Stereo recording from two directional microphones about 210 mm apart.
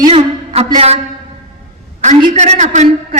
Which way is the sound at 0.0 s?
25° right (ahead or behind).